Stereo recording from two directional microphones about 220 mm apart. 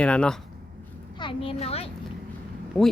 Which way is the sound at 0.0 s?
5° left (ahead or behind).